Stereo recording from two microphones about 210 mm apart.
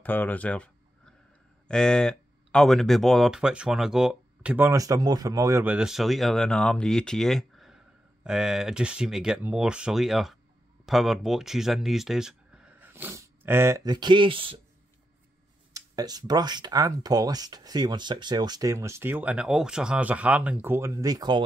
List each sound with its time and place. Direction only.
0.0 s speech: 10° left (ahead or behind); by 14.6 s 25° right (ahead or behind)
15.7 s speech: 20° right (ahead or behind)